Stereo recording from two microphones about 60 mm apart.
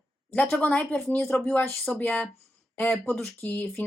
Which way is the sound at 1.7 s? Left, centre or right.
Centre.